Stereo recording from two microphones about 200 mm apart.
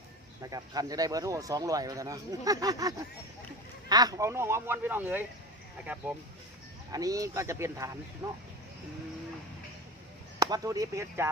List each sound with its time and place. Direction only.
0.5 s speech: 20° right (ahead or behind)
6.9 s speech: 15° right (ahead or behind)
10.4 s speech: 15° right (ahead or behind)